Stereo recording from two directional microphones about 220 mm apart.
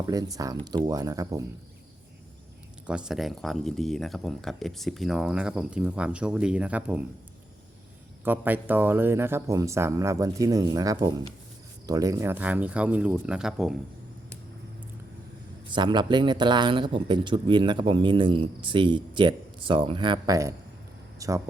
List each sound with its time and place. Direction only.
0.0 s speech: 15° right (ahead or behind)
2.8 s speech: 5° right (ahead or behind)
8.2 s speech: 10° right (ahead or behind)
15.7 s a man's voice: 20° right (ahead or behind)